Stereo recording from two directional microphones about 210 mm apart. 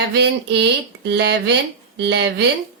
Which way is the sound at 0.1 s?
55° right (ahead or behind).